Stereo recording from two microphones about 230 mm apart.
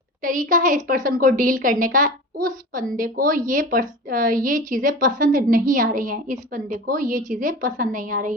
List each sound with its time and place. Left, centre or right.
0.2 s a woman's voice: right